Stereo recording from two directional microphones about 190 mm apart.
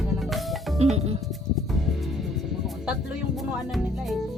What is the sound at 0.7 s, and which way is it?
Speech, 35° right (ahead or behind).